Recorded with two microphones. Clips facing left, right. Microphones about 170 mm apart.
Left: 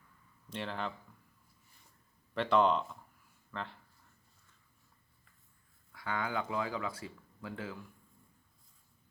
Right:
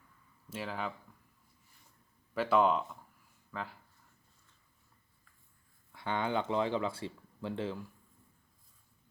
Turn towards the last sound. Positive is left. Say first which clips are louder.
# right 6 dB
turn(degrees=-30)  # may be behind; listen again after turning